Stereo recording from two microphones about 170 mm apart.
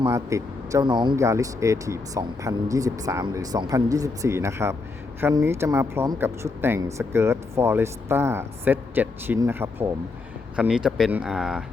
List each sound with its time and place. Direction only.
0.0 s speech: 20° right (ahead or behind)